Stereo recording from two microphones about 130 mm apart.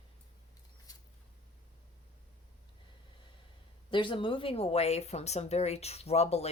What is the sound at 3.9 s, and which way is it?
A woman's voice, 40° left (ahead or behind).